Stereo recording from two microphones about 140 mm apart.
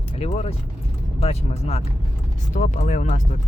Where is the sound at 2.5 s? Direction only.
60° left (ahead or behind).